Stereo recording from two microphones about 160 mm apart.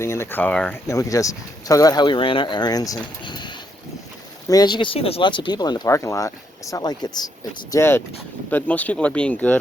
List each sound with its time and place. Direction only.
0.0 s speech: 15° left (ahead or behind)
0.9 s speech: 20° left (ahead or behind)
7.7 s speech: 15° left (ahead or behind)